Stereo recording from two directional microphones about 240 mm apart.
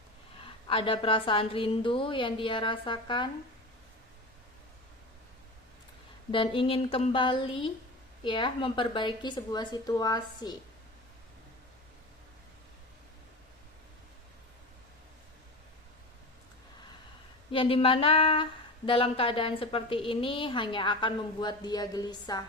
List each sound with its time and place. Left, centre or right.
0.4 s a woman's voice: left
6.3 s a woman's voice: left
17.5 s a woman's voice: left